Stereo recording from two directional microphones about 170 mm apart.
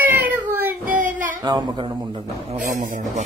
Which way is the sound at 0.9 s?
50° right (ahead or behind).